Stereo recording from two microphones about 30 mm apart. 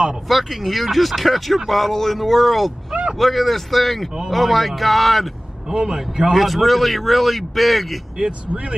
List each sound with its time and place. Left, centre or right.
0.3 s speech: centre
5.7 s a man's voice: right
6.3 s speech: centre
8.3 s speech: right